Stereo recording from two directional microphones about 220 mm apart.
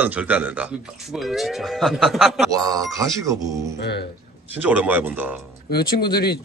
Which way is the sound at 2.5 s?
15° right (ahead or behind).